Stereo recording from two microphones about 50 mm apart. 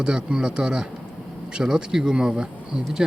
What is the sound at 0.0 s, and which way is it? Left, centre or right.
Speech, centre.